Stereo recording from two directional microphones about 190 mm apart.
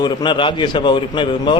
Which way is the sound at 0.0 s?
25° left (ahead or behind).